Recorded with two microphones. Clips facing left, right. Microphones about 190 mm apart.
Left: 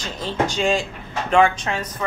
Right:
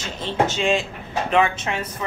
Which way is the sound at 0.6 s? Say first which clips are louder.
Left 1 dB; 35° left (ahead or behind).